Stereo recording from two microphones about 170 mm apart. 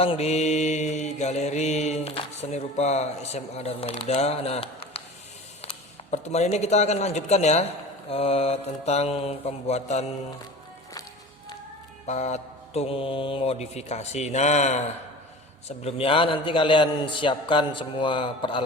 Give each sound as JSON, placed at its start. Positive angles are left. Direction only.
{"t": 0.0, "sound": "mantra", "side_deg": 35}
{"t": 5.6, "sound": "speech", "side_deg": 40}
{"t": 8.1, "sound": "mantra", "side_deg": 35}
{"t": 12.0, "sound": "mantra", "side_deg": 40}
{"t": 15.6, "sound": "a man's voice", "side_deg": 35}